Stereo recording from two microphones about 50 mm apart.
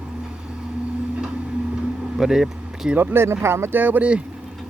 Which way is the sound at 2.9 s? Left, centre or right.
Right.